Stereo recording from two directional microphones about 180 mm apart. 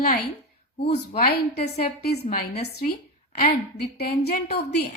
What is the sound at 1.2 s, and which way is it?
A woman's voice, 60° left (ahead or behind).